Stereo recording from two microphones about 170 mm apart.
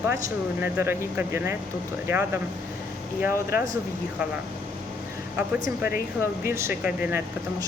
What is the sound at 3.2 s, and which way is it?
Speech, 15° right (ahead or behind).